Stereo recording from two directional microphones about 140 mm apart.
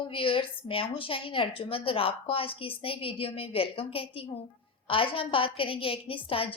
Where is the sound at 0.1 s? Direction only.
40° left (ahead or behind).